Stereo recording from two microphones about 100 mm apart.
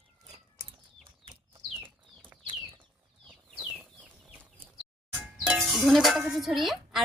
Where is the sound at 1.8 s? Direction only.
20° right (ahead or behind).